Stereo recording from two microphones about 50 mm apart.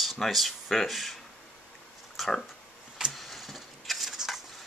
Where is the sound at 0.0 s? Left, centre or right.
Centre.